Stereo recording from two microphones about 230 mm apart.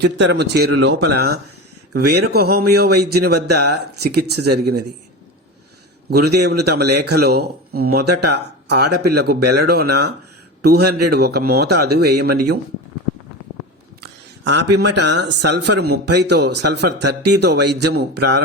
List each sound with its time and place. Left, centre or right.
0.0 s speech: right
6.1 s speech: right
14.0 s speech: right